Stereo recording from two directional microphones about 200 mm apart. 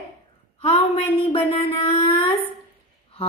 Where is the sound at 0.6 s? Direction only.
30° left (ahead or behind).